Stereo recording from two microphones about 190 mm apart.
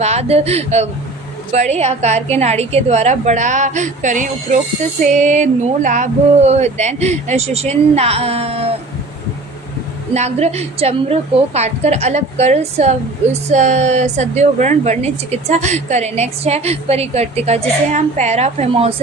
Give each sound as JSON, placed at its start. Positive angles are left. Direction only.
{"t": 0.0, "sound": "a woman's voice", "side_deg": -35}
{"t": 10.2, "sound": "a woman's voice", "side_deg": -35}